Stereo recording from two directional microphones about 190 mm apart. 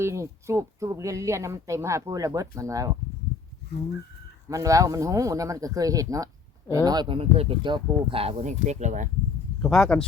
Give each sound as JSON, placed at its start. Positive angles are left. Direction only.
{"t": 0.0, "sound": "speech", "side_deg": -15}
{"t": 4.4, "sound": "speech", "side_deg": -15}
{"t": 9.6, "sound": "speech", "side_deg": 0}